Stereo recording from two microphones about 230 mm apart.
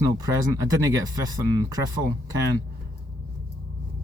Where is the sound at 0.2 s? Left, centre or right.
Centre.